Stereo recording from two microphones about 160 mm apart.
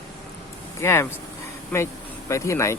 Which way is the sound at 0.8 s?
15° left (ahead or behind).